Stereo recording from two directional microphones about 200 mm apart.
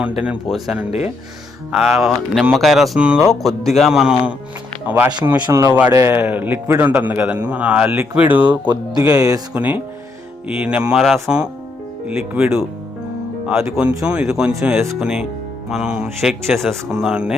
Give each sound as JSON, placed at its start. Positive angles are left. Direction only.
{"t": 0.2, "sound": "a man's voice", "side_deg": -5}
{"t": 8.7, "sound": "a man's voice", "side_deg": -20}